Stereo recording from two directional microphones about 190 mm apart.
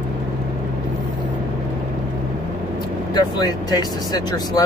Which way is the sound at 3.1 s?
20° left (ahead or behind).